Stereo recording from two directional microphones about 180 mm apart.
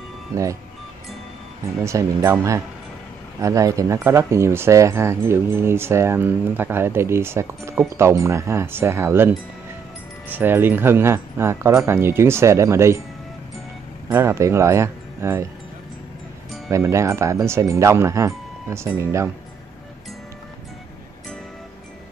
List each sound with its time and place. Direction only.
1.9 s speech: 15° right (ahead or behind)
14.0 s speech: 15° right (ahead or behind)
16.7 s speech: 15° right (ahead or behind)